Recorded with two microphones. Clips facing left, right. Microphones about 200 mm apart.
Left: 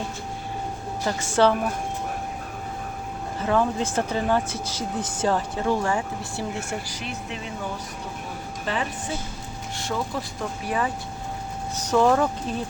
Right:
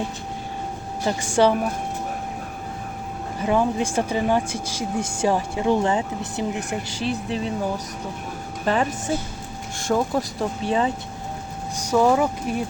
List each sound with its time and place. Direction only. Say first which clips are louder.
1.0 s speech: right 2 dB; 15° right (ahead or behind)
3.4 s speech: right 2 dB; 15° right (ahead or behind); by 7.5 s 35° right (ahead or behind)
8.7 s speech: right 7 dB; 45° right (ahead or behind)
10.6 s speech: right 4 dB; 25° right (ahead or behind)
11.8 s speech: right 1 dB; 10° right (ahead or behind)